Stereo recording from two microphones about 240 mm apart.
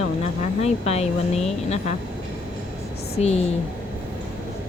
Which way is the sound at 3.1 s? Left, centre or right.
Left.